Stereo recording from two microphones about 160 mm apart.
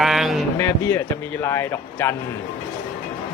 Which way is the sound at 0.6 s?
15° left (ahead or behind).